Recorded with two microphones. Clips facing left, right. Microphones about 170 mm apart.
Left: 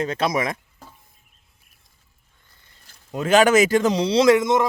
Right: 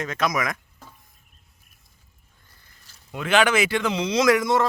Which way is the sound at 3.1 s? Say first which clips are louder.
Left 5 dB; 40° left (ahead or behind).